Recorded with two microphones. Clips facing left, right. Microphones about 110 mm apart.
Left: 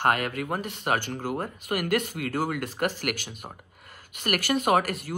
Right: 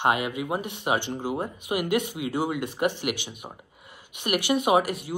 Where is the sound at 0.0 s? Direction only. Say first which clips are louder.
Even; 10° right (ahead or behind).